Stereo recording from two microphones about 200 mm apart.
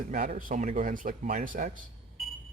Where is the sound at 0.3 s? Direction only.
40° right (ahead or behind).